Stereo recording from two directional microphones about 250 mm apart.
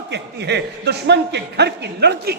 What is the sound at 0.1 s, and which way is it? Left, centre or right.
A man's voice, right.